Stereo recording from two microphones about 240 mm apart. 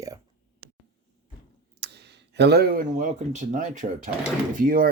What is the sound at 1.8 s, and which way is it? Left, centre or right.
Speech, right.